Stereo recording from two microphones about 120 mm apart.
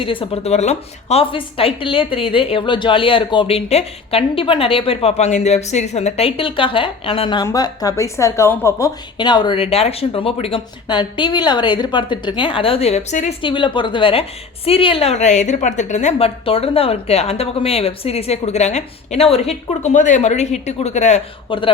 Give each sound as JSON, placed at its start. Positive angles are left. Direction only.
{"t": 0.0, "sound": "a woman's voice", "side_deg": 45}
{"t": 7.4, "sound": "speech", "side_deg": 30}
{"t": 9.1, "sound": "a woman's voice", "side_deg": 40}
{"t": 10.8, "sound": "a woman's voice", "side_deg": 40}
{"t": 13.4, "sound": "a woman's voice", "side_deg": 45}
{"t": 21.5, "sound": "a woman's voice", "side_deg": 45}